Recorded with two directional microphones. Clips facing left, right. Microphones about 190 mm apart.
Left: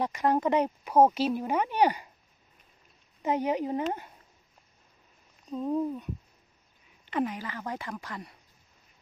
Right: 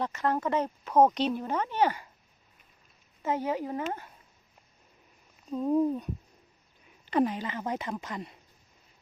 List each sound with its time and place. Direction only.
0.0 s speech: 15° left (ahead or behind)
3.2 s speech: 20° left (ahead or behind)
5.5 s speech: 5° right (ahead or behind)
7.1 s speech: 35° right (ahead or behind)
7.3 s speech: 20° right (ahead or behind)